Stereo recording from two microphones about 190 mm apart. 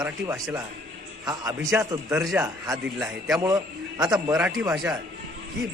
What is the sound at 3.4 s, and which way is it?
Speech, 20° right (ahead or behind).